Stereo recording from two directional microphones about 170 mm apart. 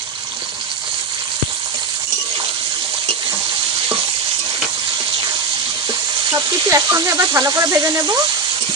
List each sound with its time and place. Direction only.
5.9 s sizzle: 20° right (ahead or behind)